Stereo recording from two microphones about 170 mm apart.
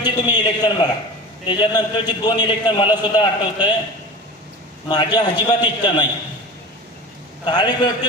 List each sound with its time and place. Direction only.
0.0 s a man's voice: 25° left (ahead or behind)
4.9 s a man's voice: 25° left (ahead or behind)
7.4 s a man's voice: 25° left (ahead or behind)